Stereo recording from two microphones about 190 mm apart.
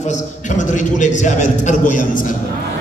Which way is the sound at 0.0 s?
40° left (ahead or behind).